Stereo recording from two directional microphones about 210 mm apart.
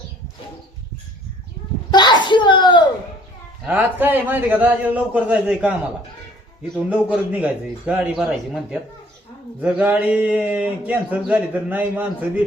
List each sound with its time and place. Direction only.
1.9 s a sound: 20° left (ahead or behind)
3.7 s a man's voice: 10° right (ahead or behind)
6.7 s a man's voice: 5° right (ahead or behind)